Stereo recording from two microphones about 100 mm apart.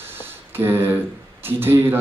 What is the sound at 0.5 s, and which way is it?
A man's voice, 25° right (ahead or behind).